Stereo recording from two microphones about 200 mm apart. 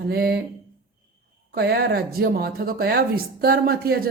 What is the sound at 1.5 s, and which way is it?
Speech, 55° right (ahead or behind).